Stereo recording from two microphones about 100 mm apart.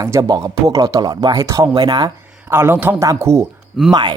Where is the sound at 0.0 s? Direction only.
30° right (ahead or behind).